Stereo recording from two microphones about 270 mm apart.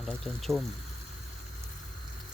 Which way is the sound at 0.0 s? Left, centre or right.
Centre.